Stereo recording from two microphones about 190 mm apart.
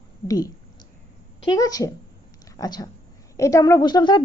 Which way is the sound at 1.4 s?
20° left (ahead or behind).